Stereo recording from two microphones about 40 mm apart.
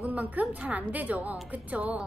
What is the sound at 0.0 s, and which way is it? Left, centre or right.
A woman's voice, right.